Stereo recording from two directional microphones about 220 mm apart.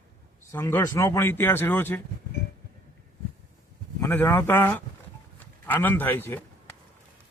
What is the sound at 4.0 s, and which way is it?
A man's voice, 10° left (ahead or behind).